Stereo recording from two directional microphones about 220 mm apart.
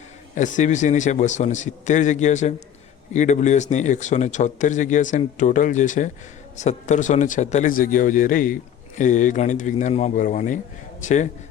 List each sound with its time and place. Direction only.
0.3 s speech: 35° left (ahead or behind)